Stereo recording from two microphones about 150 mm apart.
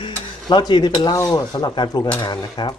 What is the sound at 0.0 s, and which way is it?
Stir, 30° left (ahead or behind).